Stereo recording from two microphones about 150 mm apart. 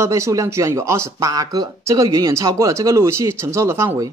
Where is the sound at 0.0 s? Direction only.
20° right (ahead or behind).